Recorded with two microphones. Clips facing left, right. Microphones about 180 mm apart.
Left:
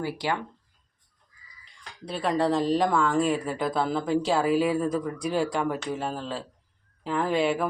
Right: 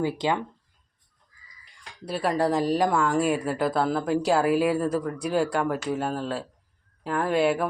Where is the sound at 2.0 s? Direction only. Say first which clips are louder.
Right 1 dB; 5° right (ahead or behind).